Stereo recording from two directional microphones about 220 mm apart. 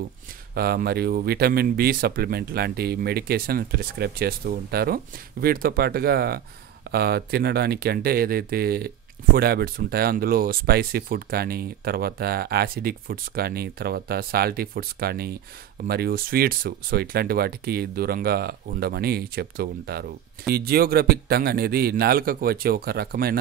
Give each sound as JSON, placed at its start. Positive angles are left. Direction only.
{"t": 0.6, "sound": "speech", "side_deg": -45}